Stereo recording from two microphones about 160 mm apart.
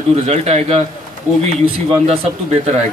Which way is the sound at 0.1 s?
40° right (ahead or behind).